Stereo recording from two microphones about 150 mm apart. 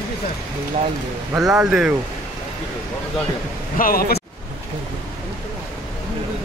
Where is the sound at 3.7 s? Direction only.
70° left (ahead or behind).